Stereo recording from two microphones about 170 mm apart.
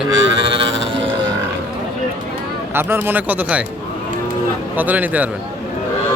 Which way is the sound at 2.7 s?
15° right (ahead or behind).